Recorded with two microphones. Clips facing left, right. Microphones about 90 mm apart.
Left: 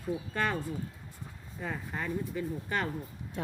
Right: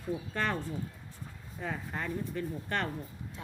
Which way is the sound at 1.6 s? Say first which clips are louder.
Even; centre (ahead or behind).